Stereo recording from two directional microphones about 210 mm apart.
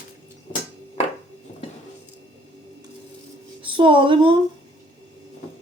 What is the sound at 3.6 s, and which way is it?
Speech, 25° right (ahead or behind).